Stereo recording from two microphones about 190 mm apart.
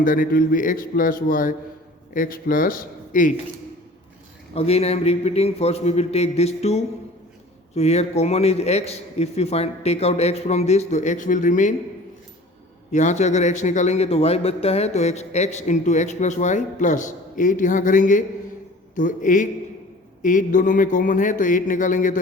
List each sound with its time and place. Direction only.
0.0 s speech: 45° left (ahead or behind)
4.5 s a man's voice: 30° left (ahead or behind)
12.9 s a man's voice: 40° left (ahead or behind)